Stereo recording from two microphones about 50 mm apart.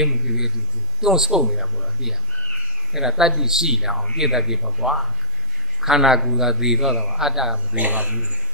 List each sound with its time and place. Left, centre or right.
0.0 s a man's voice: centre
7.7 s speech: right